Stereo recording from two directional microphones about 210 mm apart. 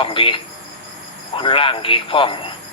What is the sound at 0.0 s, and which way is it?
Speech, 25° left (ahead or behind).